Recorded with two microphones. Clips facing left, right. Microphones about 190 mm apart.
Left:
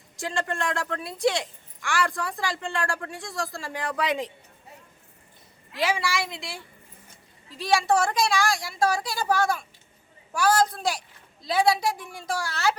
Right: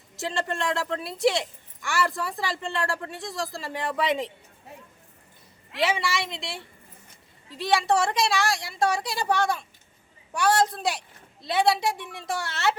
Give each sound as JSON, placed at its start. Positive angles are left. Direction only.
{"t": 0.3, "sound": "a woman's voice", "side_deg": -5}
{"t": 5.8, "sound": "a woman's voice", "side_deg": 0}